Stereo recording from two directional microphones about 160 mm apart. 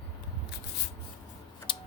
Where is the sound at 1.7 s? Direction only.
30° left (ahead or behind).